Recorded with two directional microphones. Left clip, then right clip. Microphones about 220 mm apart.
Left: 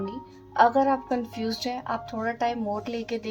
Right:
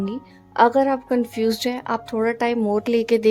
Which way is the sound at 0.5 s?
45° right (ahead or behind).